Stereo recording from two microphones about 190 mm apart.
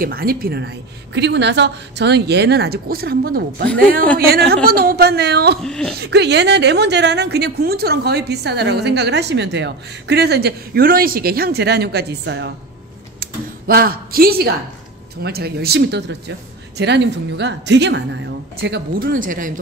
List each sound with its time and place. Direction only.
0.0 s a woman's voice: 50° right (ahead or behind)
4.6 s a woman's voice: 50° right (ahead or behind)
5.6 s speech: 5° left (ahead or behind)
5.9 s a woman's voice: 60° right (ahead or behind)
13.2 s a sound: 50° right (ahead or behind)
15.2 s a woman's voice: 55° right (ahead or behind); by 18.8 s 70° right (ahead or behind)
18.9 s speech: 45° right (ahead or behind)